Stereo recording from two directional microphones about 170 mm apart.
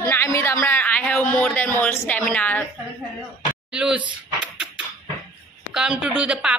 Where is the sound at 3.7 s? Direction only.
5° right (ahead or behind).